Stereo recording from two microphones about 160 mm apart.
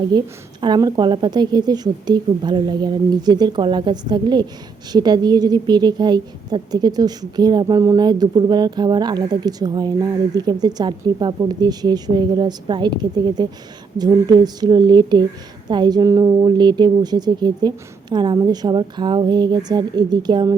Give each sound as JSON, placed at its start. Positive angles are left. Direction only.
{"t": 0.6, "sound": "a woman's voice", "side_deg": -25}